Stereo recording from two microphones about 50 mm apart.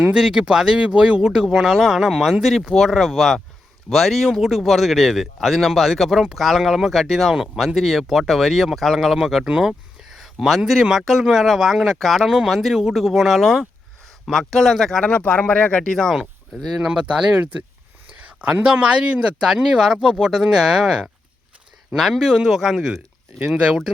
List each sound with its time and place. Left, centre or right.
0.1 s speech: centre
1.2 s speech: centre
9.1 s speech: centre
10.2 s a sound: centre
11.1 s speech: centre
15.0 s speech: left
15.9 s speech: centre
16.9 s speech: centre
17.3 s speech: right
18.6 s speech: centre
22.2 s speech: centre